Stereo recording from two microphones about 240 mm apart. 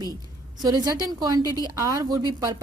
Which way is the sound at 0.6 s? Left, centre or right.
Centre.